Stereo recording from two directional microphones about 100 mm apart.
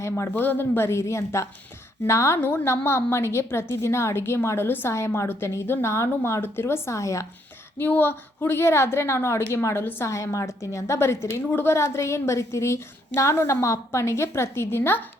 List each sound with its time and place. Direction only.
0.2 s a woman's voice: 20° left (ahead or behind)
7.8 s a woman's voice: 20° left (ahead or behind)